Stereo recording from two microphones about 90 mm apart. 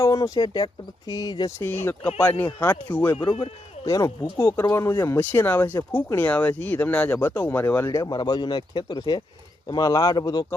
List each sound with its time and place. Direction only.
0.0 s speech: 40° left (ahead or behind)
1.5 s speech: 25° left (ahead or behind)
3.2 s speech: 60° left (ahead or behind)
3.8 s speech: 40° left (ahead or behind)
4.4 s speech: 25° left (ahead or behind)
4.6 s speech: 35° left (ahead or behind)
7.9 s speech: 35° left (ahead or behind)
8.1 s speech: 55° left (ahead or behind)